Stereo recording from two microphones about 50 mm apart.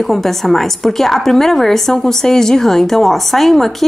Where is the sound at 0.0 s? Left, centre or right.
Centre.